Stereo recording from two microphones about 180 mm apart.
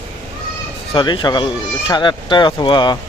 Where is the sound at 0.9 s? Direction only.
25° left (ahead or behind).